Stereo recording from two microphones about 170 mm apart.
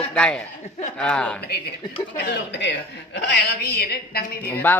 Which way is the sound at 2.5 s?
90° left.